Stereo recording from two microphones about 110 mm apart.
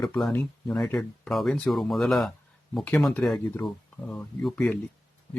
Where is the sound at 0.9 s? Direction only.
Centre (ahead or behind).